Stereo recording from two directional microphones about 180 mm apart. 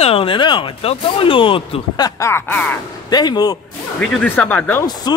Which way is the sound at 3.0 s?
20° left (ahead or behind).